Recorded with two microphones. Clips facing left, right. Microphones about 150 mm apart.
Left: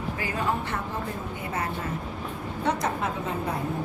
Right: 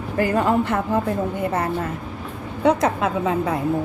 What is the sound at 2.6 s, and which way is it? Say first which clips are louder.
Speech: right 9 dB; 90° right.